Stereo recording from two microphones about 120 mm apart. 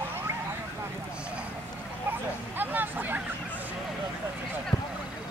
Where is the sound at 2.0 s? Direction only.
15° right (ahead or behind).